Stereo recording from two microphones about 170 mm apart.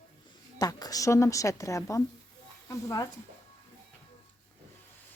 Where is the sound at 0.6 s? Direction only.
20° left (ahead or behind).